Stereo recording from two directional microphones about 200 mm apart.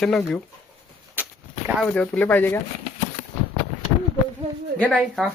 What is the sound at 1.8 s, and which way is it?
Speech, 5° left (ahead or behind).